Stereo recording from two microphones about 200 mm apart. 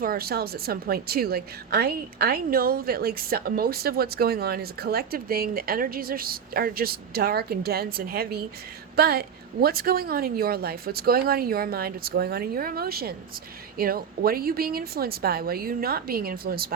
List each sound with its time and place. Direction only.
0.0 s a woman's voice: 50° right (ahead or behind)